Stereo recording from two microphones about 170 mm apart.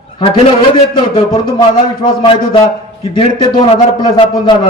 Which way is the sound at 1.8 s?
30° left (ahead or behind).